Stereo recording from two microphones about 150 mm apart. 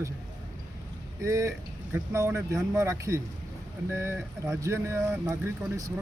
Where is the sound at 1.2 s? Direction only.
20° right (ahead or behind).